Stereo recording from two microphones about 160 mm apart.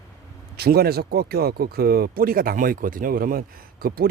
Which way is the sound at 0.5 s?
80° right.